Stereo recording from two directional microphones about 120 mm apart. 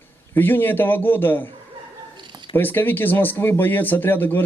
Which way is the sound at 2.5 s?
15° left (ahead or behind).